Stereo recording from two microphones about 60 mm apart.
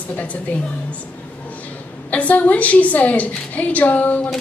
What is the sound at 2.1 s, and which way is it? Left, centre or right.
A woman's voice, left.